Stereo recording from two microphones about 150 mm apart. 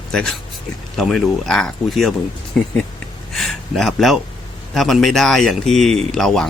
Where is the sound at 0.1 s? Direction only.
5° left (ahead or behind).